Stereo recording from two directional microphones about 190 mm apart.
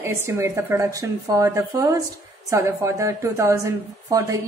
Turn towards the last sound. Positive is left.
turn(degrees=-15)  # may be behind; listen again after turning